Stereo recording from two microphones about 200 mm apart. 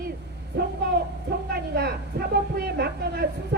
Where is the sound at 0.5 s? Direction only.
55° right (ahead or behind).